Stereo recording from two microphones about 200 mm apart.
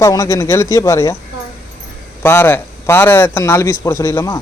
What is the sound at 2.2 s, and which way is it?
Speech, 10° left (ahead or behind).